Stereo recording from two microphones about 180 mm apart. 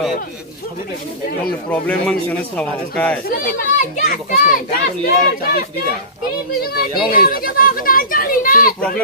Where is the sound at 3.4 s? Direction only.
45° left (ahead or behind).